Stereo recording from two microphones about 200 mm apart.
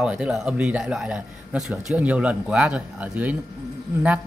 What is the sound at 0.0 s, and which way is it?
A man's voice, 5° right (ahead or behind).